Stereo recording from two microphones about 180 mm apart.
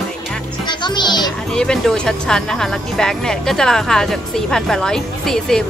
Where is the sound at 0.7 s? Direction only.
25° left (ahead or behind).